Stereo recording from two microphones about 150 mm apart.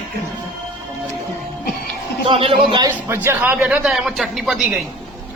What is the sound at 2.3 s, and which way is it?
Speech, 35° right (ahead or behind).